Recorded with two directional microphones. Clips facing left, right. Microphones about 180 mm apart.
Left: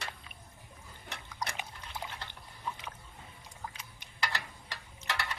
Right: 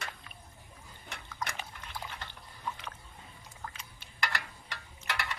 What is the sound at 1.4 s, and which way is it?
Dog, 15° left (ahead or behind).